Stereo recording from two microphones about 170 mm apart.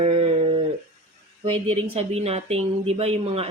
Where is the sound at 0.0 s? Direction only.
35° right (ahead or behind).